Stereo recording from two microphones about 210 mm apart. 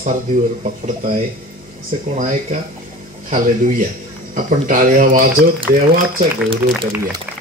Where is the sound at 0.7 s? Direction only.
30° right (ahead or behind).